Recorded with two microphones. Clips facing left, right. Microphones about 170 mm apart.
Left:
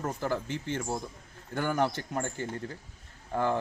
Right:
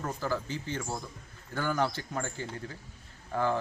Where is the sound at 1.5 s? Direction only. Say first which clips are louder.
Left 2 dB; 20° left (ahead or behind).